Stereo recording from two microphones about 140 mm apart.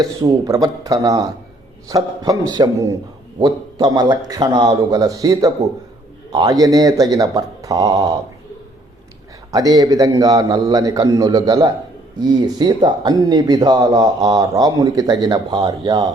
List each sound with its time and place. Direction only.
0.0 s speech: 25° right (ahead or behind)
9.5 s speech: 25° right (ahead or behind)